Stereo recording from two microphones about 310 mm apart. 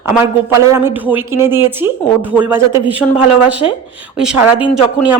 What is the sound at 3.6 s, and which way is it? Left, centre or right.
Speech, centre.